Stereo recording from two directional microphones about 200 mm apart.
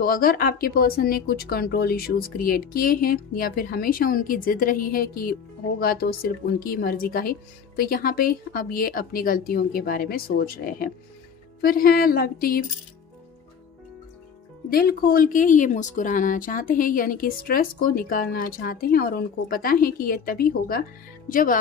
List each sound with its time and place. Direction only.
0.0 s speech: 45° left (ahead or behind)
14.7 s speech: 50° left (ahead or behind)